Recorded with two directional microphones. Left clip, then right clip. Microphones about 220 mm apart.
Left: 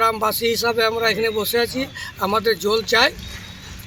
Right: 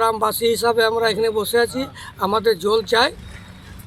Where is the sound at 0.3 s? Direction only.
30° right (ahead or behind).